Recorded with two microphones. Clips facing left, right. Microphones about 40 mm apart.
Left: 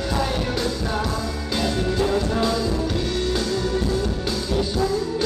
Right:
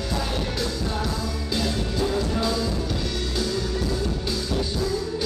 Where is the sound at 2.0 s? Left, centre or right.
Centre.